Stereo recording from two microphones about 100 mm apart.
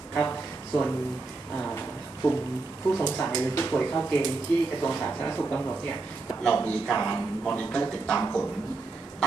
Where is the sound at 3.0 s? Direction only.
10° left (ahead or behind).